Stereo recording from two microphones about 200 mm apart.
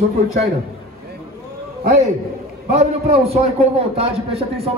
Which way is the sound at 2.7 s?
30° right (ahead or behind).